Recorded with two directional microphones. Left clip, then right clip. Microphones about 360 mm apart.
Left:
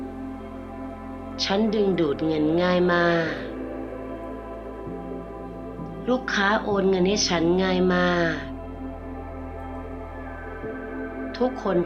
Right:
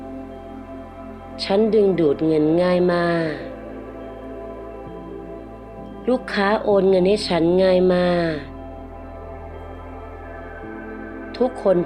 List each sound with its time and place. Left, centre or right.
1.4 s a woman's voice: right
6.1 s a woman's voice: right
11.3 s a woman's voice: centre